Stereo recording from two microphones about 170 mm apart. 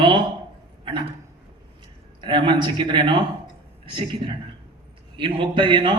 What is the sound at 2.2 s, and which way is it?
A man's voice, 30° right (ahead or behind).